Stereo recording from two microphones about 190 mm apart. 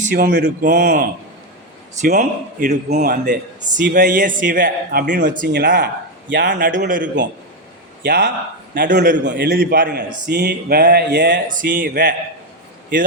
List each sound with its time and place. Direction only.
0.0 s a man's voice: 45° right (ahead or behind)
5.5 s speech: 60° right (ahead or behind)
6.7 s a man's voice: 45° right (ahead or behind)
8.0 s a man's voice: 65° right (ahead or behind)
11.4 s a man's voice: 45° right (ahead or behind)